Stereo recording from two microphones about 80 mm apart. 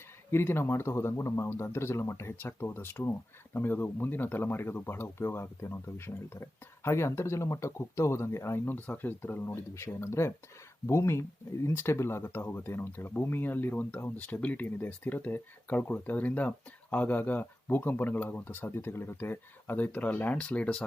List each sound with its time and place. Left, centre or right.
0.3 s speech: left; by 20.8 s centre